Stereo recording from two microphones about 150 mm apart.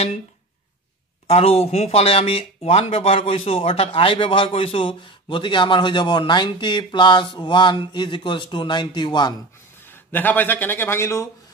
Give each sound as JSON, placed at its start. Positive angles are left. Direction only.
{"t": 1.2, "sound": "speech", "side_deg": 40}
{"t": 10.1, "sound": "speech", "side_deg": 10}